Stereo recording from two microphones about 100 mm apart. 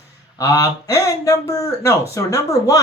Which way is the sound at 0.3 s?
35° left (ahead or behind).